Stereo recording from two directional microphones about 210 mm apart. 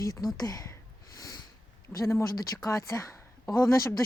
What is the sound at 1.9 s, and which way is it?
Speech, 15° left (ahead or behind).